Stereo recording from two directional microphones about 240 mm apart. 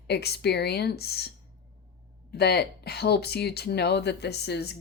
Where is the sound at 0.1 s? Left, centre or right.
Left.